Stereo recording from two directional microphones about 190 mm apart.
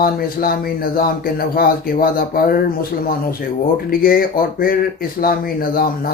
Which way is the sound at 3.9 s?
50° left (ahead or behind).